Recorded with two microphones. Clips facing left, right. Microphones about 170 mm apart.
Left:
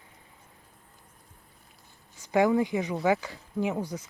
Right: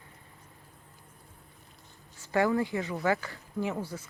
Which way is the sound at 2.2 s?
15° left (ahead or behind).